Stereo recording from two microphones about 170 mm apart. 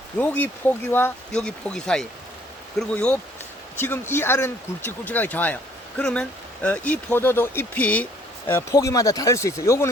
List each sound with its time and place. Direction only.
0.2 s speech: 10° left (ahead or behind)